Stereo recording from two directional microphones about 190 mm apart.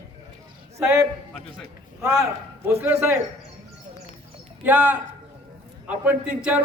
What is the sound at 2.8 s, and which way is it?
Speech, 10° right (ahead or behind).